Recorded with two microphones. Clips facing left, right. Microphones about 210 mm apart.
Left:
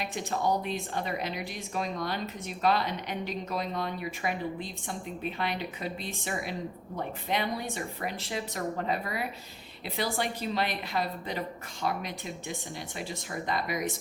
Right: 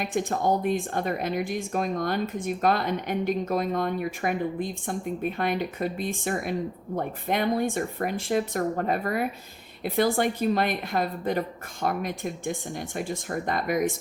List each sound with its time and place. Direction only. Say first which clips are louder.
0.0 s speech: right 5 dB; 50° right (ahead or behind)